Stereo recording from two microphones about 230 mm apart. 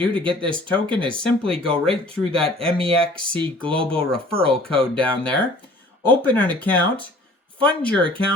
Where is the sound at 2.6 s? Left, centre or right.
Right.